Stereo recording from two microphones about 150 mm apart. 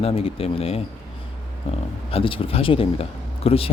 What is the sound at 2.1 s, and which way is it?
Speech, 40° left (ahead or behind).